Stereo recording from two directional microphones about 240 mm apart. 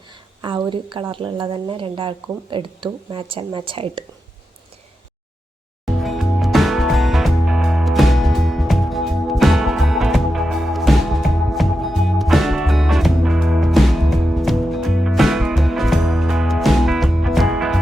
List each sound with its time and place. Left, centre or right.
0.4 s speech: centre
5.8 s music: centre